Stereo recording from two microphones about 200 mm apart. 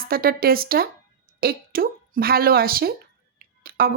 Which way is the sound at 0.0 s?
50° right (ahead or behind).